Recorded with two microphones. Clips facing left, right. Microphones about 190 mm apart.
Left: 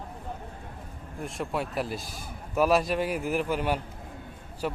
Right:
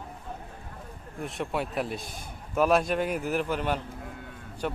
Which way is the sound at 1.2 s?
Centre (ahead or behind).